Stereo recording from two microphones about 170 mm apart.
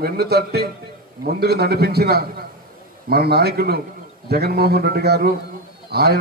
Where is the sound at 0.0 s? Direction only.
70° right (ahead or behind).